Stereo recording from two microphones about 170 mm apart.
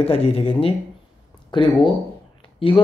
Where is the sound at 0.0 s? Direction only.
35° left (ahead or behind).